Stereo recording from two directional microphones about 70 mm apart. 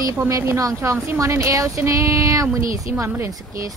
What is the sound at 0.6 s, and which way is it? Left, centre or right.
Speech, right.